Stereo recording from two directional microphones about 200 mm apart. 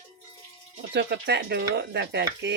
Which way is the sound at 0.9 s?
60° right (ahead or behind).